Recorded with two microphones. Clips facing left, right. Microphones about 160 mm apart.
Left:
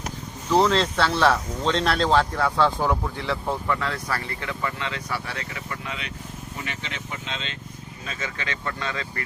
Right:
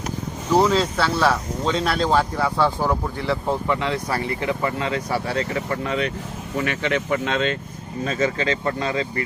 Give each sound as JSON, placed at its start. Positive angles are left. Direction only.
{"t": 0.5, "sound": "speech", "side_deg": -5}
{"t": 3.4, "sound": "speech", "side_deg": -20}
{"t": 6.6, "sound": "speech", "side_deg": -65}
{"t": 8.0, "sound": "speech", "side_deg": -40}